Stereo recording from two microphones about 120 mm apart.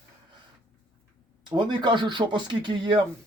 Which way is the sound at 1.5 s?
40° right (ahead or behind).